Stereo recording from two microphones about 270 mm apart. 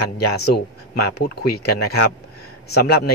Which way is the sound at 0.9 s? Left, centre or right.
Left.